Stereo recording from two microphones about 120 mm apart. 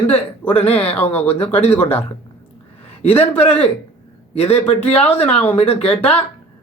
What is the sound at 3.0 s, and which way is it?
Speech, 55° left (ahead or behind).